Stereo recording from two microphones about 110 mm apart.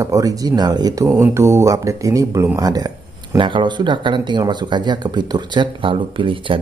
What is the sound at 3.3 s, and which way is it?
Speech, 45° right (ahead or behind).